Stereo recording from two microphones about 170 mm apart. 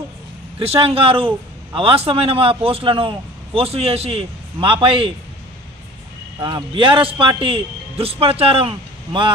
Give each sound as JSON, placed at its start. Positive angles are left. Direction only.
{"t": 0.6, "sound": "a man's voice", "side_deg": -35}
{"t": 6.4, "sound": "a man's voice", "side_deg": -25}